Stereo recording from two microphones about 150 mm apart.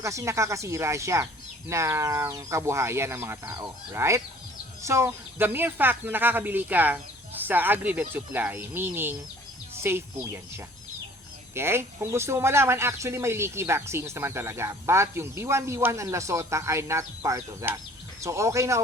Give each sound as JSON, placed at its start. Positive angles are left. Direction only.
{"t": 0.0, "sound": "speech", "side_deg": -20}
{"t": 11.5, "sound": "speech", "side_deg": -15}